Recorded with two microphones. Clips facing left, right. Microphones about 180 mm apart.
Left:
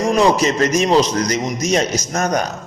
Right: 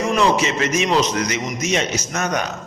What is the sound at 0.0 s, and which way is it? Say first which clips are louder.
A man's voice: left 3 dB; 35° left (ahead or behind).